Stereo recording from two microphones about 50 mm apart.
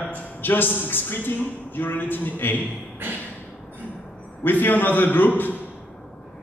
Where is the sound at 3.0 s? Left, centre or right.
Right.